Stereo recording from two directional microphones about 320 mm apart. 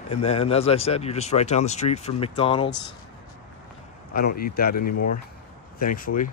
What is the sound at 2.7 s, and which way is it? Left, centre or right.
Speech, left.